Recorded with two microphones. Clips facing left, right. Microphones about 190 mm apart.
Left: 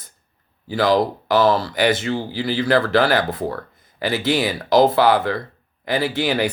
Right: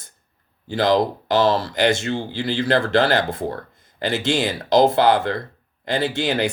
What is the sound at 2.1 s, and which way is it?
Speech, 25° right (ahead or behind).